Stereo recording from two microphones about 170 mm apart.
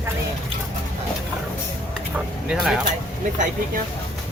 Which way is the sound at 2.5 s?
5° right (ahead or behind).